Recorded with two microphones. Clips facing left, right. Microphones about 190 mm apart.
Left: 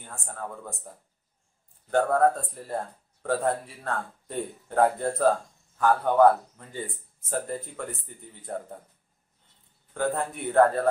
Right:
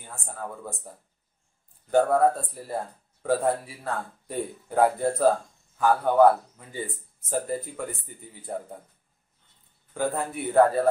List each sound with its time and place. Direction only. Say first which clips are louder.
0.0 s speech: right 1 dB; 5° right (ahead or behind)
1.9 s speech: right 2 dB; 5° right (ahead or behind)
9.9 s speech: even; 5° right (ahead or behind)